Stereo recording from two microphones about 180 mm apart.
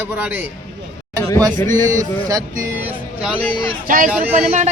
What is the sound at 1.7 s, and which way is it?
Speech, 45° right (ahead or behind).